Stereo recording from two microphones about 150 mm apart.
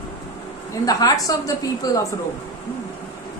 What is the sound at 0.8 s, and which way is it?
Speech, 25° left (ahead or behind).